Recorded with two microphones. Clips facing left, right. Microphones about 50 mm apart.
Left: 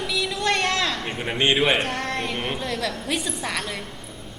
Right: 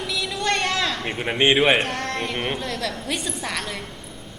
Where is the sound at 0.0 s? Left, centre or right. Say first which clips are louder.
Left 1 dB; centre.